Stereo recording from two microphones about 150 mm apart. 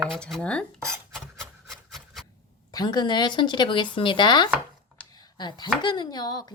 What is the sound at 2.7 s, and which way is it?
Speech, 30° left (ahead or behind).